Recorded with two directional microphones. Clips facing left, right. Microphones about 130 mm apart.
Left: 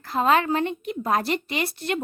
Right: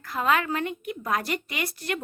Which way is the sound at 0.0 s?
30° left (ahead or behind).